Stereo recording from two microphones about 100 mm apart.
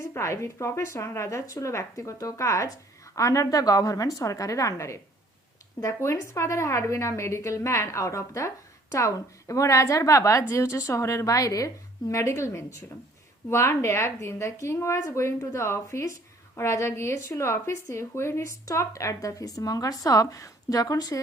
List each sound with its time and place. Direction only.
0.0 s a woman's voice: 30° left (ahead or behind)